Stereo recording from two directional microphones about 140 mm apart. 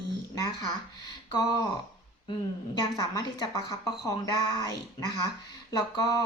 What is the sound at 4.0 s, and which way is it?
Speech, 30° left (ahead or behind).